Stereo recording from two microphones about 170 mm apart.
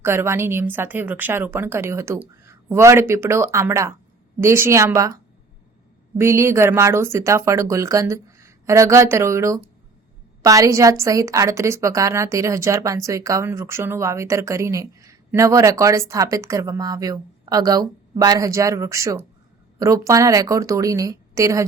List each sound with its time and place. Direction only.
0.0 s a woman's voice: 15° right (ahead or behind)
6.1 s a woman's voice: 15° right (ahead or behind)